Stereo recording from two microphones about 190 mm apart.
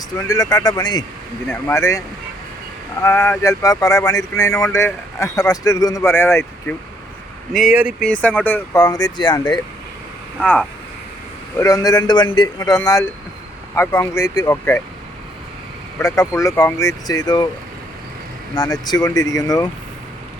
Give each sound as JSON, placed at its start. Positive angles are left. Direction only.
{"t": 0.2, "sound": "speech", "side_deg": 20}
{"t": 7.5, "sound": "speech", "side_deg": -5}
{"t": 8.0, "sound": "speech", "side_deg": 5}
{"t": 10.4, "sound": "speech", "side_deg": 5}
{"t": 11.5, "sound": "speech", "side_deg": 20}
{"t": 16.0, "sound": "speech", "side_deg": 15}
{"t": 18.5, "sound": "speech", "side_deg": 20}